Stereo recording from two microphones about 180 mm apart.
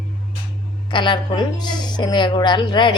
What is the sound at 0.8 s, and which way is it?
A woman's voice, 25° left (ahead or behind).